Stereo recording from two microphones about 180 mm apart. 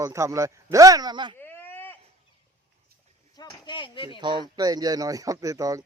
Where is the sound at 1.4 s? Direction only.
10° left (ahead or behind).